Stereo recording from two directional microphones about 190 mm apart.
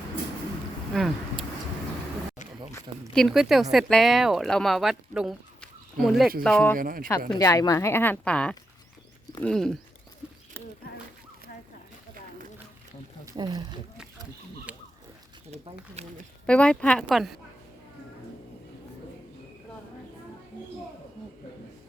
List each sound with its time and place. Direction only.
0.9 s speech: centre (ahead or behind)
3.1 s speech: centre (ahead or behind)
6.7 s speech: 45° right (ahead or behind)
7.3 s speech: 20° left (ahead or behind); by 9.7 s 5° left (ahead or behind)
13.2 s speech: 20° right (ahead or behind)
14.7 s a sound: 10° right (ahead or behind)
16.0 s speech: 35° right (ahead or behind)
16.5 s speech: 5° left (ahead or behind)